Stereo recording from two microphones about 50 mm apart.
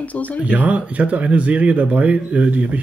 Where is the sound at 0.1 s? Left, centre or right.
Left.